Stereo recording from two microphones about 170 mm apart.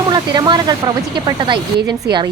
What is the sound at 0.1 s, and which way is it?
Speech, 25° right (ahead or behind).